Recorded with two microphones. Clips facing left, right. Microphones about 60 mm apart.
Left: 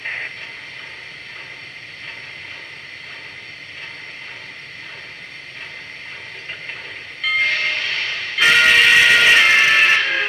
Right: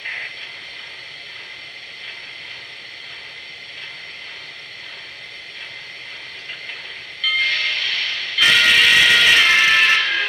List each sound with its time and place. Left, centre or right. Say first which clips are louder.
0.0 s vehicle: left 2 dB; centre
7.2 s train: left 1 dB; left